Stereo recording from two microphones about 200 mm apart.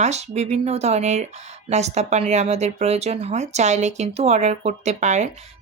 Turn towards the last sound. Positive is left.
turn(degrees=-35)  # may be behind; listen again after turning